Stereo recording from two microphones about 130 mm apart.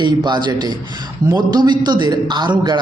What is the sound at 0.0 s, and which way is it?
A man's voice, 35° right (ahead or behind).